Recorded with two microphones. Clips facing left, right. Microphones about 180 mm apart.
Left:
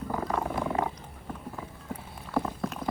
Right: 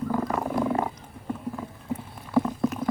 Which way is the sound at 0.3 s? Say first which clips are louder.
Right 4 dB; 5° right (ahead or behind).